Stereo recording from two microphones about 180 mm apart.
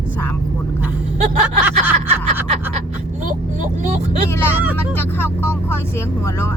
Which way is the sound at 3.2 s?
45° right (ahead or behind).